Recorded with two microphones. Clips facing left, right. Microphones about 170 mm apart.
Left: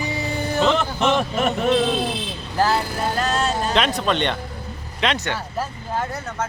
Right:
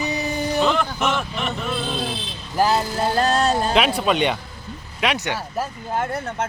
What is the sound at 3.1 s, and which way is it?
Music, 35° right (ahead or behind).